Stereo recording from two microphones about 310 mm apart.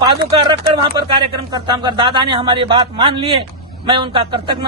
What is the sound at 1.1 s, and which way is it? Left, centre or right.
A man's voice, centre.